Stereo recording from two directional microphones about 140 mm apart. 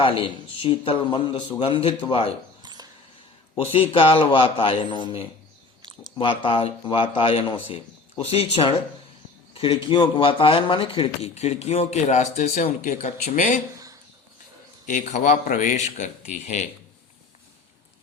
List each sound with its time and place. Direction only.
0.0 s a man's voice: 40° left (ahead or behind)
3.6 s a man's voice: 40° left (ahead or behind); by 13.6 s 65° left (ahead or behind)
14.8 s a man's voice: 60° left (ahead or behind)